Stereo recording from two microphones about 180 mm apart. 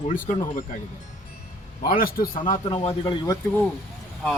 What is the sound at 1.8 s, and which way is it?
Speech, 55° left (ahead or behind).